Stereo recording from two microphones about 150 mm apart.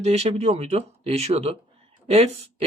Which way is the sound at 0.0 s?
45° right (ahead or behind).